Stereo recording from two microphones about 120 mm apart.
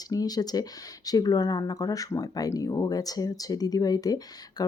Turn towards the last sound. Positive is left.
turn(degrees=30)  # may be behind; listen again after turning